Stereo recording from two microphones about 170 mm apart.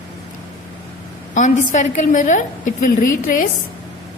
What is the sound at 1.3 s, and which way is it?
A woman's voice, 45° left (ahead or behind).